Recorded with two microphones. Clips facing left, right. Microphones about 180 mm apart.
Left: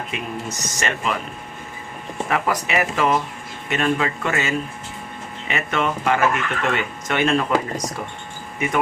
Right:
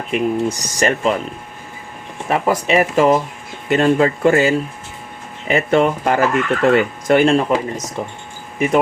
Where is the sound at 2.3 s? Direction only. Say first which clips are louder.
Right 6 dB; 30° right (ahead or behind).